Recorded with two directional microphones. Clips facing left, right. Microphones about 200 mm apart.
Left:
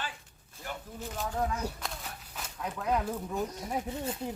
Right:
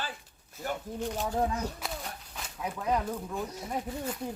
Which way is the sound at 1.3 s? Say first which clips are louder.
Right 2 dB; 30° right (ahead or behind).